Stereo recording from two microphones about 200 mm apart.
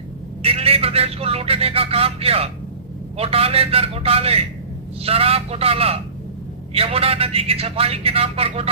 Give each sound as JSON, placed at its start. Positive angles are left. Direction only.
{"t": 0.4, "sound": "speech", "side_deg": -30}